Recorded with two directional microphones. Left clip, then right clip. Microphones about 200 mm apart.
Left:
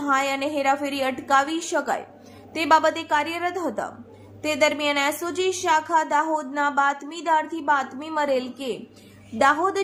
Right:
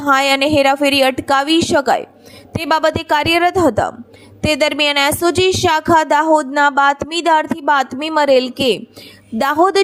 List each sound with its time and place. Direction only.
0.0 s a woman's voice: 45° right (ahead or behind)